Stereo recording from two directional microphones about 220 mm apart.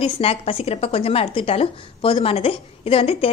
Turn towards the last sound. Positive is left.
turn(degrees=25)  # may be behind; listen again after turning